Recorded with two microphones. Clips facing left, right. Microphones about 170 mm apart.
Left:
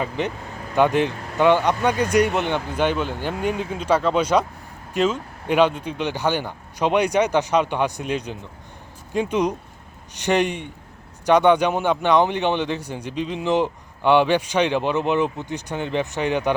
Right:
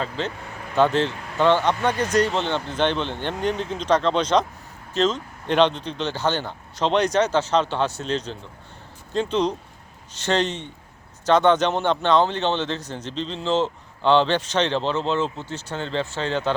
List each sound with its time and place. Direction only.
0.0 s a man's voice: 15° left (ahead or behind)